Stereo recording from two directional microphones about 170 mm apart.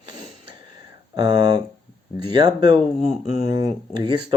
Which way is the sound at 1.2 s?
30° right (ahead or behind).